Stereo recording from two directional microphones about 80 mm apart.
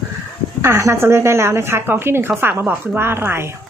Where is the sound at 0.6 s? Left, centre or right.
Right.